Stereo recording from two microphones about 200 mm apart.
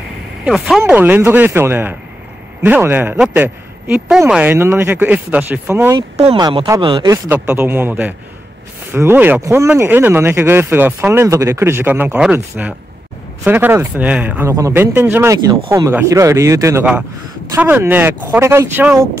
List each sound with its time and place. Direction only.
0.5 s speech: centre (ahead or behind)
6.1 s speech: 30° right (ahead or behind)
6.4 s speech: 20° right (ahead or behind)
7.2 s speech: 10° right (ahead or behind)
13.4 s speech: 10° right (ahead or behind)